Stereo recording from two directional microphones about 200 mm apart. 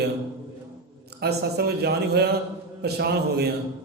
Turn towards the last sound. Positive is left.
turn(degrees=-55)  # may be behind; listen again after turning